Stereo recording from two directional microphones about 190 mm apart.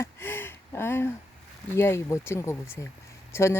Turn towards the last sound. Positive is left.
turn(degrees=15)  # may be behind; listen again after turning